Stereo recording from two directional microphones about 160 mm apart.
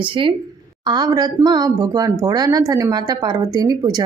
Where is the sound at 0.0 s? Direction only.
30° right (ahead or behind).